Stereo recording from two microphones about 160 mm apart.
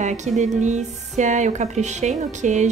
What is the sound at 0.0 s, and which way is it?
Music, 45° right (ahead or behind).